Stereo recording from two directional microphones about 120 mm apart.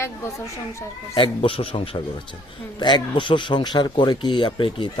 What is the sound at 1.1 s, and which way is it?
Speech, 50° left (ahead or behind).